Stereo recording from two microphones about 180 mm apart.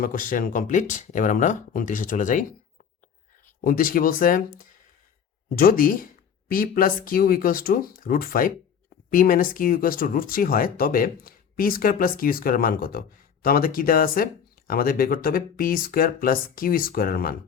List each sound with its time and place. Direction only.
0.0 s speech: 50° left (ahead or behind)
3.6 s speech: 50° left (ahead or behind)